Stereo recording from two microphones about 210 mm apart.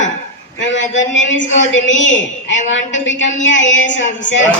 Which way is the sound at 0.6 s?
60° left (ahead or behind).